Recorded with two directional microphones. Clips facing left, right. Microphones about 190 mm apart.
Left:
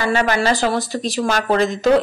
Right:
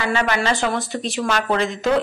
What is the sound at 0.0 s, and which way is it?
Speech, 40° left (ahead or behind).